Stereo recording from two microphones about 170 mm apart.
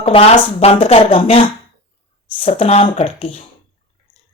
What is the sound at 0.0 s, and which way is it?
Speech, 35° left (ahead or behind).